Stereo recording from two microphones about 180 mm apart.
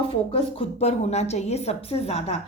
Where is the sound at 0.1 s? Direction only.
30° left (ahead or behind).